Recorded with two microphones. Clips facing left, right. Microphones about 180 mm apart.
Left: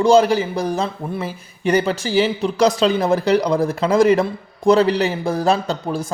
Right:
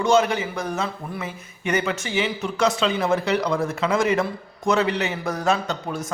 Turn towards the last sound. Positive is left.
turn(degrees=30)  # may be behind; listen again after turning